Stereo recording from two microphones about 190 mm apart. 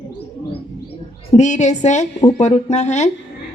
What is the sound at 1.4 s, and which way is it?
A woman's voice, 40° left (ahead or behind).